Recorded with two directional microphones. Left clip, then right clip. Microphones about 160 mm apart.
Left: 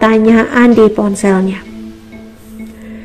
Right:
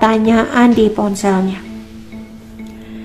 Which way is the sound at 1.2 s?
20° left (ahead or behind).